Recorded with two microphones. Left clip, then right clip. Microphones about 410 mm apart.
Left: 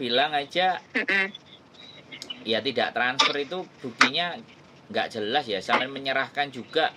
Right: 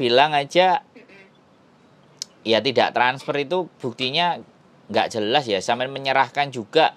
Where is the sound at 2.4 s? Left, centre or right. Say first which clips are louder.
Right 7 dB; right.